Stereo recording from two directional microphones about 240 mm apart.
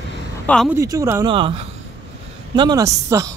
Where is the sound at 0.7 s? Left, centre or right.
Centre.